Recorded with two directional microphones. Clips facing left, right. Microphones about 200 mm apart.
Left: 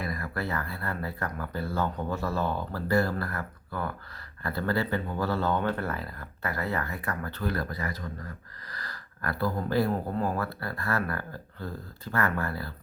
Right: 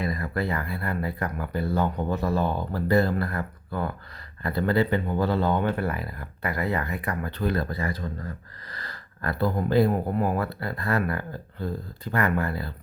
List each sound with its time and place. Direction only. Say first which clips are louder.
0.0 s speech: right 5 dB; 20° right (ahead or behind)